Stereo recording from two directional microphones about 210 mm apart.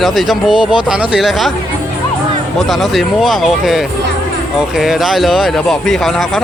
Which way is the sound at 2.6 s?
Centre (ahead or behind).